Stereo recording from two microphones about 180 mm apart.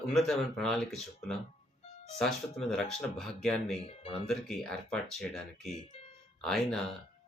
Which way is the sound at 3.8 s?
30° left (ahead or behind).